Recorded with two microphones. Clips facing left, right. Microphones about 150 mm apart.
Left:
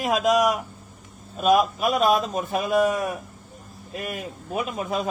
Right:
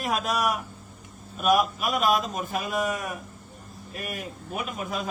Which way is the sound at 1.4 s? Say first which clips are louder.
Left 3 dB; 30° left (ahead or behind).